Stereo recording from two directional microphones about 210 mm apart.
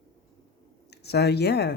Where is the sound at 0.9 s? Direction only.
50° left (ahead or behind).